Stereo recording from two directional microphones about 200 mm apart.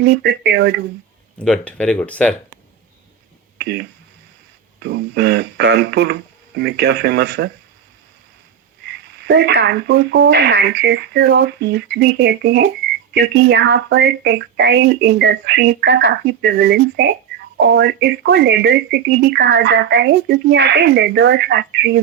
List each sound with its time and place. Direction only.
0.0 s speech: 55° right (ahead or behind)
1.4 s speech: 5° left (ahead or behind)
3.6 s speech: 55° right (ahead or behind)
9.2 s speech: 55° right (ahead or behind)